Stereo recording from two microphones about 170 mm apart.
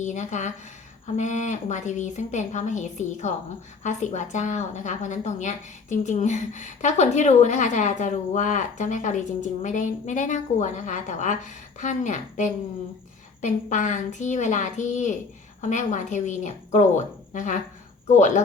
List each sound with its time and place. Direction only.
0.0 s a woman's voice: 45° left (ahead or behind)